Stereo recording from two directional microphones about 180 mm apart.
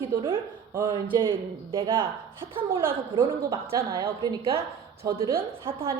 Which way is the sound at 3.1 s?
20° right (ahead or behind).